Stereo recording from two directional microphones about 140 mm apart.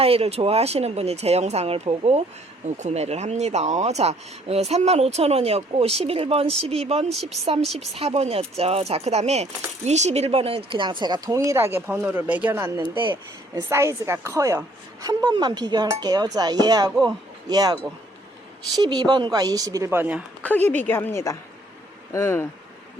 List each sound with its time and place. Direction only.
0.0 s speech: 45° right (ahead or behind); by 12.7 s 15° right (ahead or behind)
12.7 s speech: 35° right (ahead or behind)
13.6 s speech: 20° right (ahead or behind)
18.8 s speech: 30° right (ahead or behind); by 20.2 s 10° right (ahead or behind)
20.4 s a woman's voice: 10° left (ahead or behind)